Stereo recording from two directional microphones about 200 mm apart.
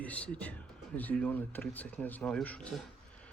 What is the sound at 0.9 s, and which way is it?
Speech, 5° left (ahead or behind).